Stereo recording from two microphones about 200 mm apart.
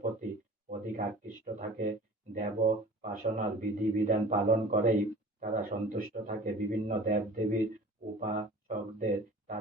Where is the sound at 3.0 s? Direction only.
40° right (ahead or behind).